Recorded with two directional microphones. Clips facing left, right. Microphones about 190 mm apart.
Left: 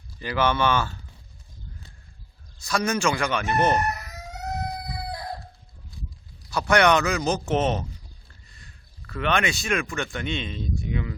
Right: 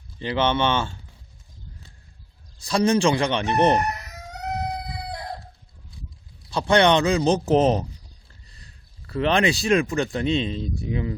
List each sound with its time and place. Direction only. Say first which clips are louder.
0.2 s a man's voice: right 1 dB; 25° right (ahead or behind)
2.6 s speech: right 6 dB; 30° right (ahead or behind)
6.5 s a man's voice: right 2 dB; 30° right (ahead or behind)